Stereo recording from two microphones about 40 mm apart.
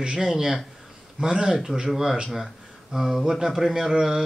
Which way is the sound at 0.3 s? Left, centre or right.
Centre.